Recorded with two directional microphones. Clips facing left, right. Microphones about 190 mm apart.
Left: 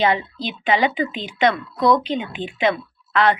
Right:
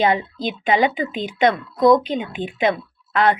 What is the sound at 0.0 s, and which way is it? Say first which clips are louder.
A woman's voice: right 1 dB; 45° right (ahead or behind).